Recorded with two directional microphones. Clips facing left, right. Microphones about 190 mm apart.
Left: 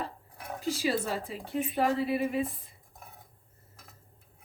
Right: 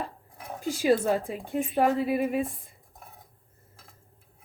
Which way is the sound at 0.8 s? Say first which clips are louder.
Right 9 dB; 50° right (ahead or behind).